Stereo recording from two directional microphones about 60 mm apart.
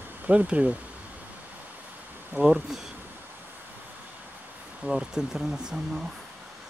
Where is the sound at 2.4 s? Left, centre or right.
Centre.